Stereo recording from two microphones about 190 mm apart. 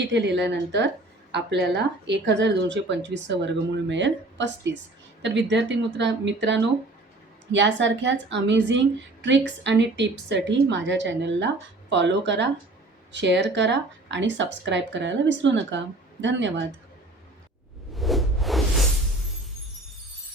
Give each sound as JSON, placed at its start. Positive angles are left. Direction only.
{"t": 0.0, "sound": "a woman's voice", "side_deg": -65}
{"t": 17.9, "sound": "whoosh", "side_deg": 0}